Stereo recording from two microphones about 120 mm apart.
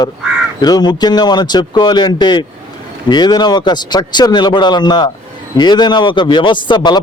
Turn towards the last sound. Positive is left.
turn(degrees=40)  # may be behind; listen again after turning